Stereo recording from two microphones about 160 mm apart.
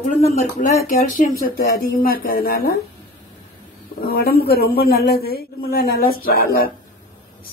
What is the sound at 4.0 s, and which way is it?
A woman's voice, 75° left (ahead or behind).